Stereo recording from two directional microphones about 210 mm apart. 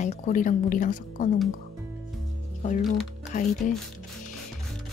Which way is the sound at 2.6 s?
35° left (ahead or behind).